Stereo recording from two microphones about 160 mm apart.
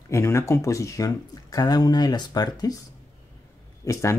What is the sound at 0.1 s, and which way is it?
Speech, 20° left (ahead or behind).